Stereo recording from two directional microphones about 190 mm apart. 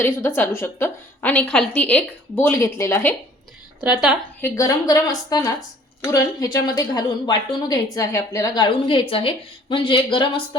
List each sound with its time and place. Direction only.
0.0 s a woman's voice: 10° left (ahead or behind)
3.8 s a woman's voice: 5° right (ahead or behind)
4.4 s a woman's voice: 15° left (ahead or behind)